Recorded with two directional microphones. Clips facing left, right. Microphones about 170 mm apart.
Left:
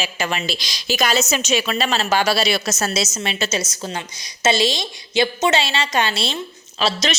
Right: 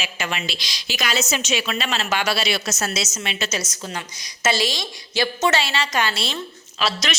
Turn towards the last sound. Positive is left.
turn(degrees=25)  # may be behind; listen again after turning